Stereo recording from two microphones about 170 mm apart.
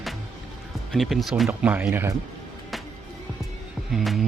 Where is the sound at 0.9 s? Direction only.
Centre (ahead or behind).